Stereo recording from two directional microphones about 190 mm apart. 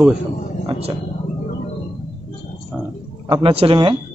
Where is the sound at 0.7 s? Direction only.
30° right (ahead or behind).